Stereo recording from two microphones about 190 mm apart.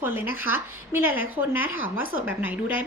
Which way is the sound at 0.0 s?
10° right (ahead or behind).